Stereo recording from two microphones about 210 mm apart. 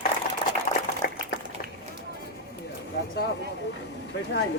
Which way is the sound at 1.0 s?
45° left (ahead or behind).